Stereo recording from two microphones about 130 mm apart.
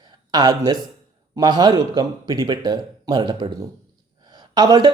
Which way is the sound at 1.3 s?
30° right (ahead or behind).